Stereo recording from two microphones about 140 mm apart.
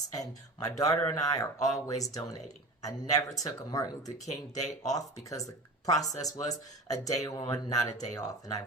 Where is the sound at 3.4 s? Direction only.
25° left (ahead or behind).